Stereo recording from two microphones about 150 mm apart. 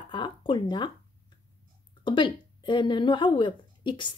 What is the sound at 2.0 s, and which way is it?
Speech, 30° left (ahead or behind).